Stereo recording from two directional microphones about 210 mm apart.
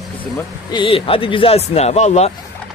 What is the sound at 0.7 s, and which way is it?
A man's voice, 25° left (ahead or behind).